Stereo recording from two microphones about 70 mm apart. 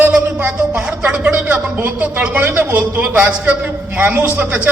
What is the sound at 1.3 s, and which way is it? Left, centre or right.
A man's voice, right.